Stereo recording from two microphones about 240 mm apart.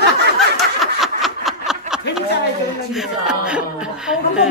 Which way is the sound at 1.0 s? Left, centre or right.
Centre.